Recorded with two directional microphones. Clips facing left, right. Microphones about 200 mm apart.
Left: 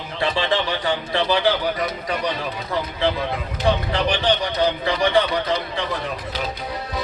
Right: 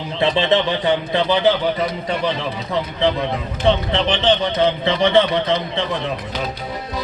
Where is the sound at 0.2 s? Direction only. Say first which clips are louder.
Right 5 dB; 20° right (ahead or behind).